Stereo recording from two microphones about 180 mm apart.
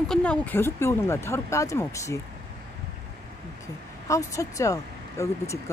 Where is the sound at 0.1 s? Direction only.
5° left (ahead or behind).